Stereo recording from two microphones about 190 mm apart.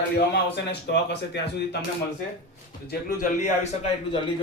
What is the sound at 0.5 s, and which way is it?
A man's voice, 65° left (ahead or behind).